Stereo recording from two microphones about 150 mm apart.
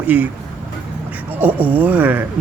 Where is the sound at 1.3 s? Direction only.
10° right (ahead or behind).